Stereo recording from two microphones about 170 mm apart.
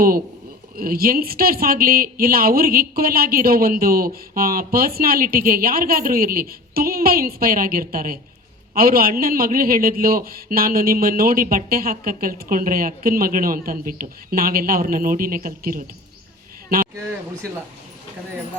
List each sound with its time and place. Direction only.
0.8 s speech: 60° right (ahead or behind)